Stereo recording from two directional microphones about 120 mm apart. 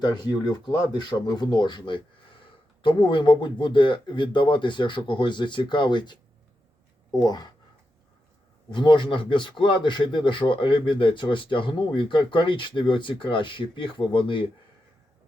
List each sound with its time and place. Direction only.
0.0 s speech: 40° left (ahead or behind)
8.7 s speech: 40° left (ahead or behind)